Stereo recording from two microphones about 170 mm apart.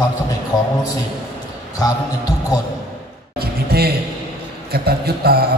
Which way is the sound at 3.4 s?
65° right (ahead or behind).